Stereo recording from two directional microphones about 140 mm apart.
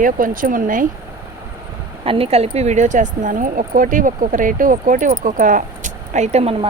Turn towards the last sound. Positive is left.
turn(degrees=-45)  # may be behind; listen again after turning